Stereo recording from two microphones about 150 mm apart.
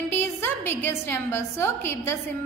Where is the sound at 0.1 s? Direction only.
15° left (ahead or behind).